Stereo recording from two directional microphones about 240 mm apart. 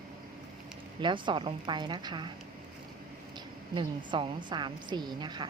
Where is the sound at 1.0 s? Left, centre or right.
Centre.